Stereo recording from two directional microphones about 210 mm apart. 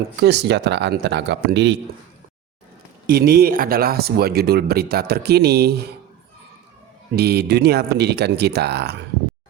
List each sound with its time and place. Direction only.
0.2 s speech: 55° right (ahead or behind)
3.1 s speech: 45° right (ahead or behind)
7.2 s speech: 50° right (ahead or behind)